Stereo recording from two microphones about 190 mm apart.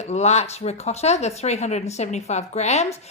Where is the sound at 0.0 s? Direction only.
35° left (ahead or behind).